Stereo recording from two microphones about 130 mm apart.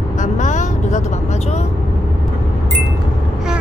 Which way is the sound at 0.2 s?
70° left (ahead or behind).